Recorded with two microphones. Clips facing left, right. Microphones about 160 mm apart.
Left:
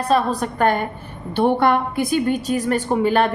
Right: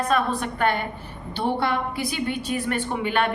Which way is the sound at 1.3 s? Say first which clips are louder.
Left 8 dB; 55° left (ahead or behind).